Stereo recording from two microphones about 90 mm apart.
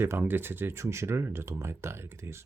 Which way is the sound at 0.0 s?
25° right (ahead or behind).